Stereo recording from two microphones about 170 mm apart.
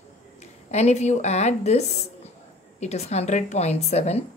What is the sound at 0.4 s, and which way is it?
A woman's voice, 40° left (ahead or behind).